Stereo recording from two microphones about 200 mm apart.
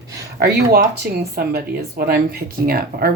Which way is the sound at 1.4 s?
50° right (ahead or behind).